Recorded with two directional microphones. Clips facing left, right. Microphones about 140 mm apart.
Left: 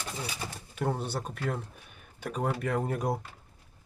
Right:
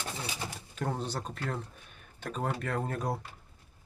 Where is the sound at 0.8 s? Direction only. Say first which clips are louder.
Left 3 dB; 10° left (ahead or behind).